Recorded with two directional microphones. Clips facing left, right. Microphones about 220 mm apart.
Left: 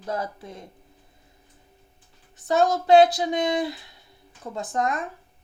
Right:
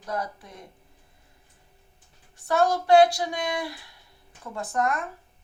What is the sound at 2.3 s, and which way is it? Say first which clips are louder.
Speech: left 2 dB; 20° left (ahead or behind).